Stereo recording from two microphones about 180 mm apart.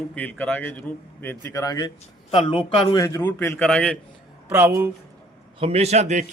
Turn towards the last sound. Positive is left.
turn(degrees=-40)  # may be behind; listen again after turning